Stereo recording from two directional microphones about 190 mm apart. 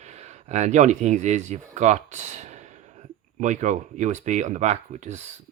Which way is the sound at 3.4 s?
40° right (ahead or behind).